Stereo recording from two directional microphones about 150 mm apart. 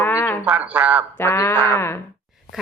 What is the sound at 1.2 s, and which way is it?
Speech, 15° left (ahead or behind).